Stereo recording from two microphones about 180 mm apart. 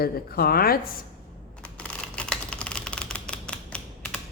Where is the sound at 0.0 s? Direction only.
60° left (ahead or behind).